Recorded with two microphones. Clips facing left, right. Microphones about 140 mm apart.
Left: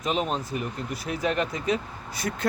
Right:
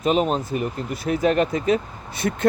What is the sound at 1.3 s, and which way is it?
Speech, 65° right (ahead or behind).